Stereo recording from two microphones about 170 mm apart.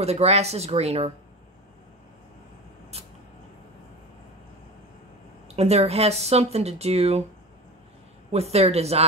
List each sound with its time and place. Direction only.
0.0 s speech: 40° right (ahead or behind)
5.6 s speech: 40° right (ahead or behind)
8.3 s speech: 40° right (ahead or behind)